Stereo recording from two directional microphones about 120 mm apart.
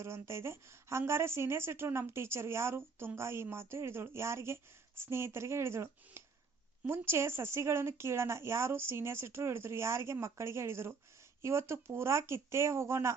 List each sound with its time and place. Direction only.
0.0 s a woman's voice: 20° right (ahead or behind)